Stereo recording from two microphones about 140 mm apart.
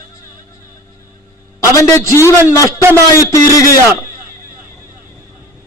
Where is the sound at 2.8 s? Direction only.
20° right (ahead or behind).